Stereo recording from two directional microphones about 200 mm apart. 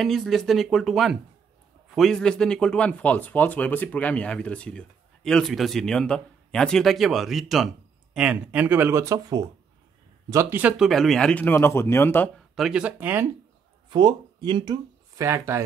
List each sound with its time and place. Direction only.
0.0 s a man's voice: centre (ahead or behind)
12.5 s a man's voice: 5° right (ahead or behind)
13.8 s speech: 20° right (ahead or behind)